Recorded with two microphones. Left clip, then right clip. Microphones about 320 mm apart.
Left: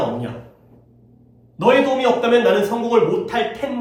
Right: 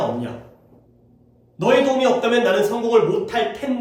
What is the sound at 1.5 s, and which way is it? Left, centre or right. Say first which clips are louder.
A man's voice: left 1 dB; centre.